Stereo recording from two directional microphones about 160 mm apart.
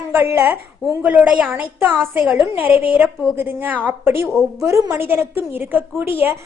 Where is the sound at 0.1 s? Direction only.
15° right (ahead or behind).